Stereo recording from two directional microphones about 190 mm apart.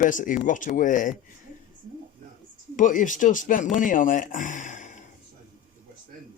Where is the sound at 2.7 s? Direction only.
45° left (ahead or behind).